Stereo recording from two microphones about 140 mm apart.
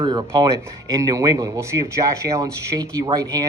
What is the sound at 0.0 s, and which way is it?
Speech, 35° right (ahead or behind).